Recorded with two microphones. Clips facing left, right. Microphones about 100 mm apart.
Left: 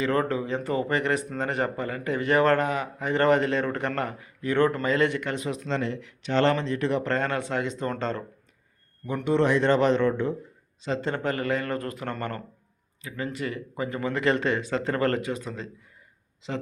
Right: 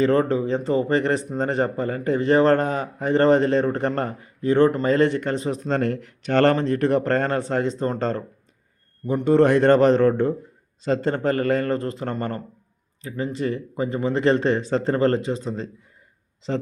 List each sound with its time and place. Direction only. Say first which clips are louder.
0.0 s speech: right 6 dB; 30° right (ahead or behind)
5.7 s speech: right 7 dB; 50° right (ahead or behind); by 16.6 s 35° right (ahead or behind)